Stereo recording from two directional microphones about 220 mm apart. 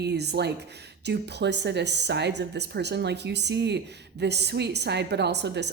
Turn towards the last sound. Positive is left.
turn(degrees=-50)  # may be behind; listen again after turning